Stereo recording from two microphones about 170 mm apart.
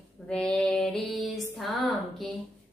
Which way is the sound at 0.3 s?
5° left (ahead or behind).